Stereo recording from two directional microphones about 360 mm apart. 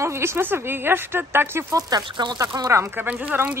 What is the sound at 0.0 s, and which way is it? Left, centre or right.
A woman's voice, centre.